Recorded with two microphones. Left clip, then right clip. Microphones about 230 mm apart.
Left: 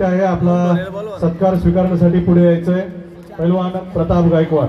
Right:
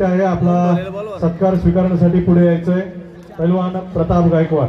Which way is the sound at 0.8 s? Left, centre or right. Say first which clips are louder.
Even; centre.